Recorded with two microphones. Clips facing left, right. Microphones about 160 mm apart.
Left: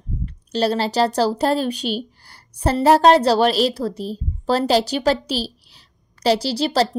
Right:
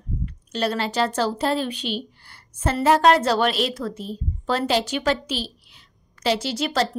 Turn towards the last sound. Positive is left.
turn(degrees=35)  # may be behind; listen again after turning